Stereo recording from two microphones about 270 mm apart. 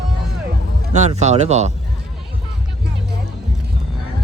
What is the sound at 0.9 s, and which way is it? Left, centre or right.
Speech, right.